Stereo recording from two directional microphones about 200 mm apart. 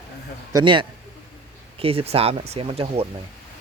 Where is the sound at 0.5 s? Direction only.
25° right (ahead or behind).